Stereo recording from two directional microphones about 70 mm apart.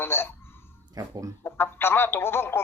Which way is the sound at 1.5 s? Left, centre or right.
Left.